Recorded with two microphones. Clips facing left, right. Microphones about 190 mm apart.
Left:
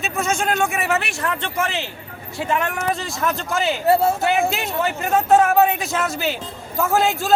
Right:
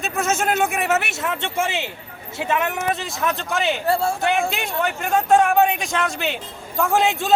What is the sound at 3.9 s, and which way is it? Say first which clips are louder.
Speech: left 6 dB; 20° left (ahead or behind).